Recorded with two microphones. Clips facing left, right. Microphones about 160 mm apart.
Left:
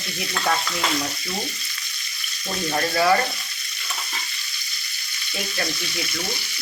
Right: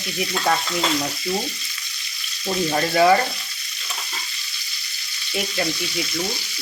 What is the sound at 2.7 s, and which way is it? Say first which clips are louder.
Speech: right 3 dB; 25° right (ahead or behind).